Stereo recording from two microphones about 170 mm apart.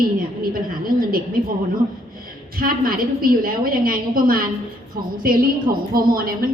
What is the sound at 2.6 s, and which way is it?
A woman's voice, 55° right (ahead or behind).